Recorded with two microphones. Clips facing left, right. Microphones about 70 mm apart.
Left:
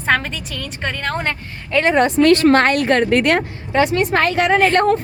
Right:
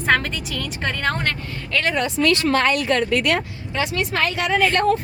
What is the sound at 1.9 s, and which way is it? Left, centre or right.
A woman's voice, left.